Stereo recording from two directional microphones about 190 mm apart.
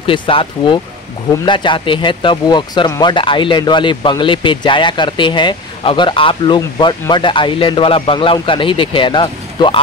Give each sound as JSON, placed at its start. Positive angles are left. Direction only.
{"t": 0.0, "sound": "speech", "side_deg": 30}